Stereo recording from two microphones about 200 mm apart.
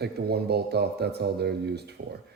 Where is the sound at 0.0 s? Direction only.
55° right (ahead or behind).